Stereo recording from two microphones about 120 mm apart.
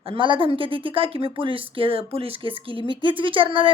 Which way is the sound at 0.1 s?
45° right (ahead or behind).